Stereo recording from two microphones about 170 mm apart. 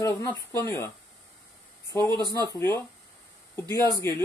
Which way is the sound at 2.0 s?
25° right (ahead or behind).